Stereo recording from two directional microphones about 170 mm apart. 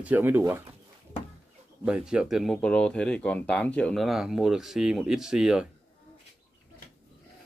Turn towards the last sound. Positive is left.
turn(degrees=-5)  # may be behind; listen again after turning